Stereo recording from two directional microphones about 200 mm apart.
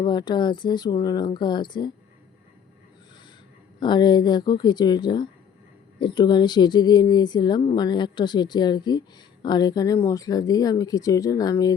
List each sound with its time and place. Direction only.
0.0 s speech: 20° left (ahead or behind)
3.8 s speech: 20° left (ahead or behind)